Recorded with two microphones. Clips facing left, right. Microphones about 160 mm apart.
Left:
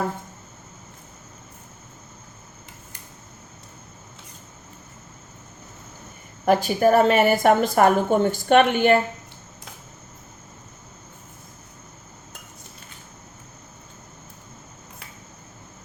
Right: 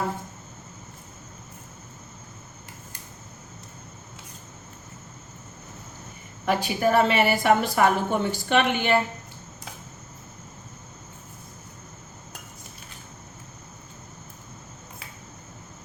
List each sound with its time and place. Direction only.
6.4 s a woman's voice: 45° left (ahead or behind)